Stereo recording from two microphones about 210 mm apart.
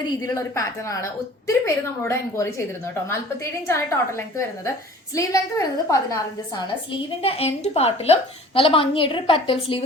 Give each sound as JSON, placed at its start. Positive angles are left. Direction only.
{"t": 0.1, "sound": "a woman's voice", "side_deg": 15}
{"t": 3.7, "sound": "a woman's voice", "side_deg": 15}